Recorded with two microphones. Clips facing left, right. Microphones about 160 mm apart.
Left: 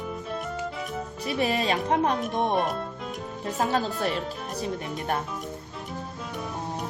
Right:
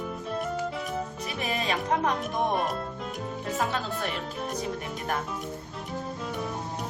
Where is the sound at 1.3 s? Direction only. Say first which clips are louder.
Left 5 dB; 35° left (ahead or behind).